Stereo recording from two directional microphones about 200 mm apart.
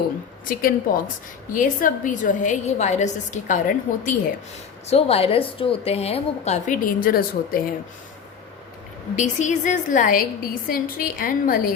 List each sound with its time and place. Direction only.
0.4 s a woman's voice: 45° left (ahead or behind)
4.9 s a woman's voice: 30° left (ahead or behind); by 7.6 s 45° left (ahead or behind)
9.1 s a woman's voice: 35° left (ahead or behind)